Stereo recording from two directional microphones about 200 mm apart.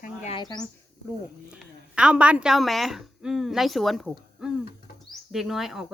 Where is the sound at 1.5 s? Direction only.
5° right (ahead or behind).